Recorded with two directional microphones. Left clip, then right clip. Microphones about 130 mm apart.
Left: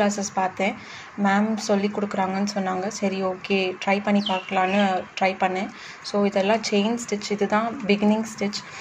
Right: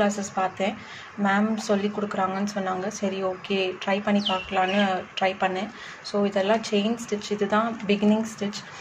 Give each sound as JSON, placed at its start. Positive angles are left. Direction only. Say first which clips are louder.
{"t": 0.0, "sound": "speech", "louder": "left 2 dB", "side_deg": 25}